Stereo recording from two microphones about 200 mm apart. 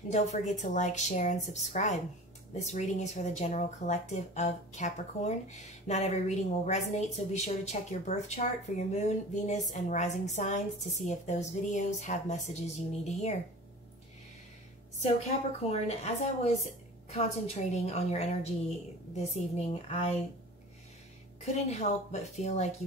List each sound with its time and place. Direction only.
0.1 s speech: 35° left (ahead or behind)
15.0 s speech: 30° left (ahead or behind)
21.5 s speech: 35° left (ahead or behind)